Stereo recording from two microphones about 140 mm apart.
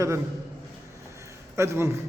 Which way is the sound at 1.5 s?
20° right (ahead or behind).